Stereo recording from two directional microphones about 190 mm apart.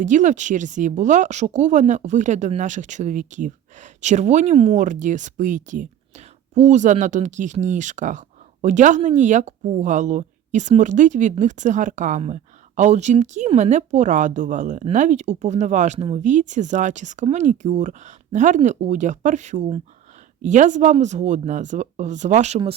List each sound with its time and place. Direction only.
0.0 s speech: 40° right (ahead or behind)